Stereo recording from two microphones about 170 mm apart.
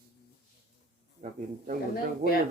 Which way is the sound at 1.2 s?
50° right (ahead or behind).